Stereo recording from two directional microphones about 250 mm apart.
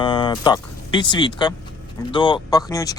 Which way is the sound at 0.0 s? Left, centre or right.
Centre.